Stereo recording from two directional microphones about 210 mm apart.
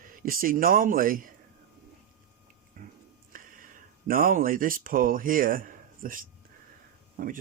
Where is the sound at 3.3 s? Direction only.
40° right (ahead or behind).